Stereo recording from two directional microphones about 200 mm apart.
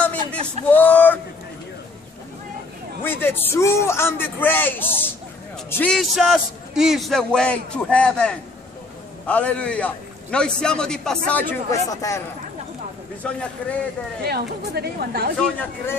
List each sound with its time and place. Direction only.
0.0 s a sound: 5° left (ahead or behind)
0.7 s speech: 10° left (ahead or behind)
3.0 s a man's voice: 10° left (ahead or behind)
13.6 s a man's voice: 5° left (ahead or behind)
14.2 s speech: 50° right (ahead or behind)
15.3 s a man's voice: 5° left (ahead or behind)